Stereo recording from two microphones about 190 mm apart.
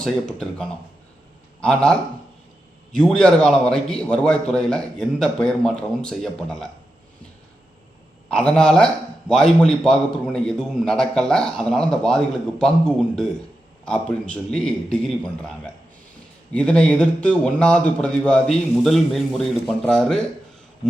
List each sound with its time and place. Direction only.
0.0 s a man's voice: 5° left (ahead or behind)
8.3 s a man's voice: 5° left (ahead or behind)